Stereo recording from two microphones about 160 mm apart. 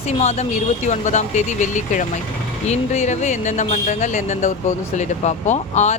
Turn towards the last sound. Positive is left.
turn(degrees=45)  # may be behind; listen again after turning